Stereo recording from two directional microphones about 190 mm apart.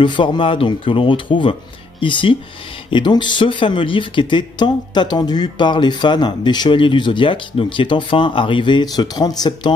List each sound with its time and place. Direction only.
0.0 s speech: 25° left (ahead or behind)